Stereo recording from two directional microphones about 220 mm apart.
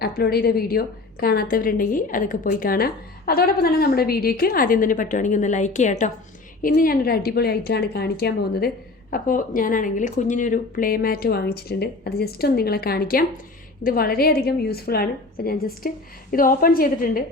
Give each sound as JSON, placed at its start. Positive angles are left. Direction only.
{"t": 0.0, "sound": "a woman's voice", "side_deg": 45}